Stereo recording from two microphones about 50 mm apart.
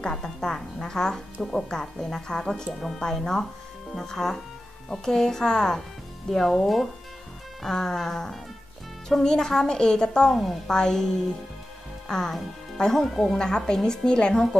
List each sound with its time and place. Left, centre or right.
0.0 s speech: centre
10.3 s speech: centre